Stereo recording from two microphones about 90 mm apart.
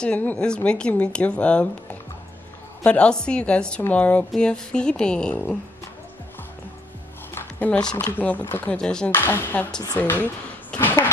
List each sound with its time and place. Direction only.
0.0 s speech: 15° left (ahead or behind)
7.3 s a sound: 20° left (ahead or behind)
8.2 s speech: 20° left (ahead or behind)
8.7 s speech: 10° left (ahead or behind)
9.1 s speech: 25° left (ahead or behind)
10.7 s a sound: 20° left (ahead or behind)